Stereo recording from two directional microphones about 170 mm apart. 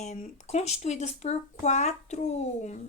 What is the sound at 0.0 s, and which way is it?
A woman's voice, 40° left (ahead or behind).